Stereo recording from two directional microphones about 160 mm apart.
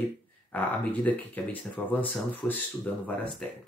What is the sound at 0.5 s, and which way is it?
Speech, 10° left (ahead or behind).